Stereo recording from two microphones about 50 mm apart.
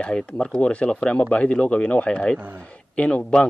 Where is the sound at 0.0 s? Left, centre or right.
Left.